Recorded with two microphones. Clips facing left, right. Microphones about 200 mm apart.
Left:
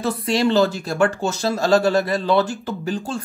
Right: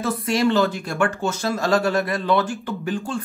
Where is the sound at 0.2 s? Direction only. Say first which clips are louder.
Left 2 dB; 30° left (ahead or behind).